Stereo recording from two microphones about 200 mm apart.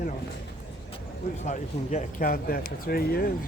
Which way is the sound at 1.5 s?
35° left (ahead or behind).